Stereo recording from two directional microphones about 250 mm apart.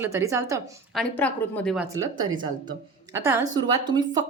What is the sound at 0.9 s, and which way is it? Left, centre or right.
Speech, centre.